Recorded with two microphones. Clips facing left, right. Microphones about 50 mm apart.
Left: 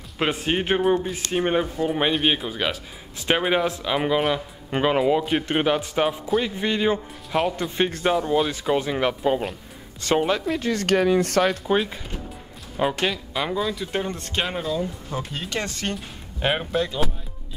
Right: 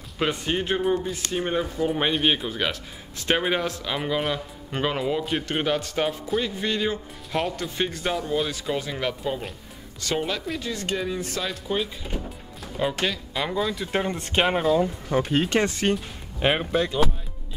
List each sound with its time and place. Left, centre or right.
0.2 s speech: left
1.9 s speech: centre
4.6 s speech: centre
6.6 s speech: centre
8.5 s speech: left
10.6 s speech: left
12.7 s speech: centre
13.9 s speech: centre
14.8 s speech: right
15.9 s speech: centre